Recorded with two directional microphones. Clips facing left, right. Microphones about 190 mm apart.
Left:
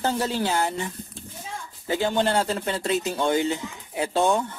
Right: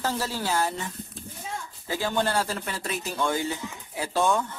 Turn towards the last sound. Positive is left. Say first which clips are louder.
# left 3 dB
turn(degrees=20)  # may be behind; listen again after turning